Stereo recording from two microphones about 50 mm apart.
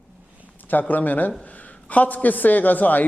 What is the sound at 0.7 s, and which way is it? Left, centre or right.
A man's voice, left.